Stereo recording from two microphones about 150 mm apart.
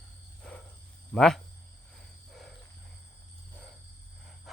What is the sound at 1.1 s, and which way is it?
Speech, 5° left (ahead or behind).